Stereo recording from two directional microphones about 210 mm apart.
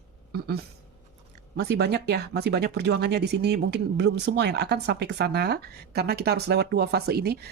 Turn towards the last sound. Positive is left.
turn(degrees=-50)  # may be behind; listen again after turning